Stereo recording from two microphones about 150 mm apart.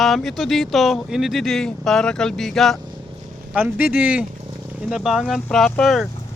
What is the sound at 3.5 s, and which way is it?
Speech, 10° right (ahead or behind).